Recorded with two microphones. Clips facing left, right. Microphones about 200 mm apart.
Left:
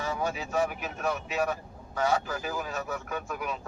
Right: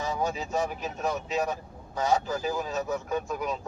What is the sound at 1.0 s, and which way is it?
A man's voice, 20° right (ahead or behind).